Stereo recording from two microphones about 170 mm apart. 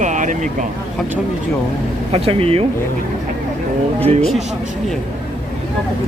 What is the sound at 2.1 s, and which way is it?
Speech, 35° right (ahead or behind).